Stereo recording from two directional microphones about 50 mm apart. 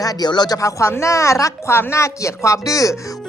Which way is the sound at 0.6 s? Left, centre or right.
Left.